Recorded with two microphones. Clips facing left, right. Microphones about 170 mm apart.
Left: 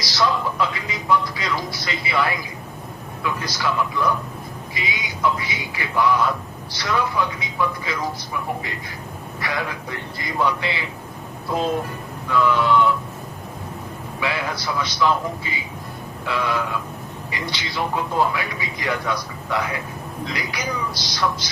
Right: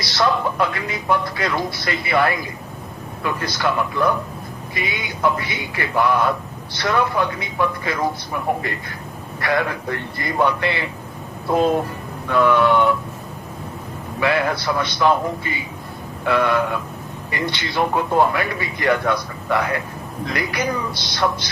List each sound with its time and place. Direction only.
0.0 s a man's voice: 55° right (ahead or behind)
14.2 s a man's voice: 55° right (ahead or behind)